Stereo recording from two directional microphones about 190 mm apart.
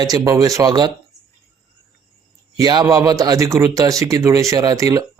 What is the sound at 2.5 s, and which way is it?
Speech, 20° right (ahead or behind).